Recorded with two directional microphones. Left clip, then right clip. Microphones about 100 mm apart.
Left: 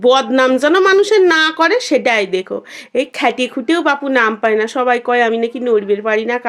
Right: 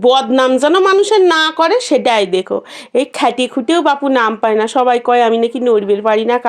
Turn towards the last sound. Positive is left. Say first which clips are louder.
# right 3 dB
turn(degrees=-40)  # may be behind; listen again after turning